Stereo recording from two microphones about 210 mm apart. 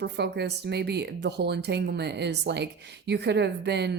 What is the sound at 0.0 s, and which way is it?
A woman's voice, 55° right (ahead or behind).